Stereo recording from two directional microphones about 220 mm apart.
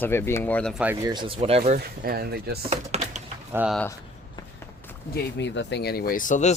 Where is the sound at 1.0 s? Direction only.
20° right (ahead or behind); by 2.6 s 45° right (ahead or behind).